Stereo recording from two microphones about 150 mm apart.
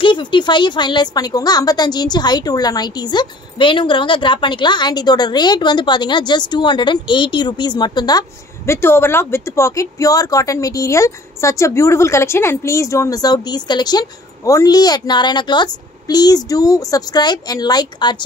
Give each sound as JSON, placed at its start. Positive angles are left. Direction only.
{"t": 0.0, "sound": "a woman's voice", "side_deg": 30}